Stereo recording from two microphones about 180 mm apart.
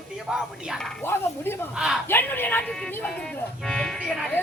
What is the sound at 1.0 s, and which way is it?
Speech, 15° left (ahead or behind).